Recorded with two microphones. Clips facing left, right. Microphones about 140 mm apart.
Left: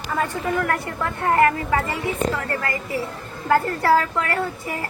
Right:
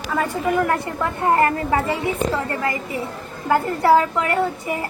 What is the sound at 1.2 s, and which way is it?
A child's voice, 30° right (ahead or behind).